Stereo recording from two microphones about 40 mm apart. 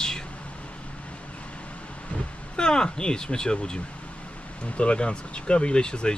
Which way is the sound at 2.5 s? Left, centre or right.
Centre.